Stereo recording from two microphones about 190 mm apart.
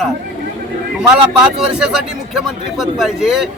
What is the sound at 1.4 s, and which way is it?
A man's voice, 5° right (ahead or behind).